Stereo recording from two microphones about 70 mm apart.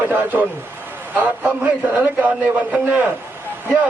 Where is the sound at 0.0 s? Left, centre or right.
Right.